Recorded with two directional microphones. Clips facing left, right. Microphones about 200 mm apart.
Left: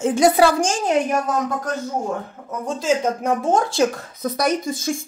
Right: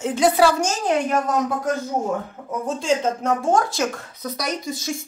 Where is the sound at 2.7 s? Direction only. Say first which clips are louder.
Left 1 dB; 5° left (ahead or behind).